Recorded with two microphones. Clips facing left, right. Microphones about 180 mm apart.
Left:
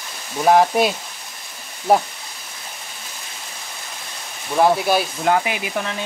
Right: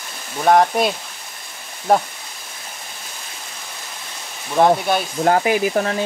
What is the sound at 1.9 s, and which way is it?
Speech, 5° left (ahead or behind).